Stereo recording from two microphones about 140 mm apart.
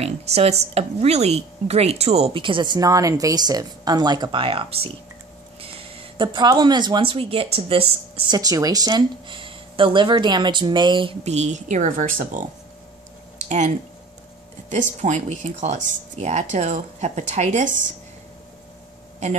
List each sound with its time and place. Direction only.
0.0 s a woman's voice: 50° right (ahead or behind)
5.6 s a sound: 40° right (ahead or behind)
6.2 s a woman's voice: 30° right (ahead or behind)
8.4 s a woman's voice: 25° right (ahead or behind)
11.2 s speech: 55° right (ahead or behind)
14.7 s speech: 55° right (ahead or behind)